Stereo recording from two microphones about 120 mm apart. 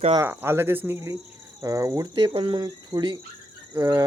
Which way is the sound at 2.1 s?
45° right (ahead or behind).